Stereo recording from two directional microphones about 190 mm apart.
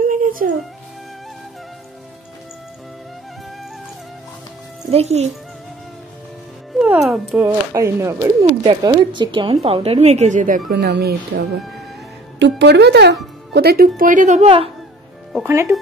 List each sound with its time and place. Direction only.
0.0 s music: 45° right (ahead or behind)
4.9 s a woman's voice: 35° right (ahead or behind)
6.7 s music: centre (ahead or behind)
7.4 s a woman's voice: 15° right (ahead or behind); by 10.6 s 40° right (ahead or behind)
10.7 s speech: 60° right (ahead or behind); by 14.7 s 30° right (ahead or behind)
15.4 s speech: 15° right (ahead or behind)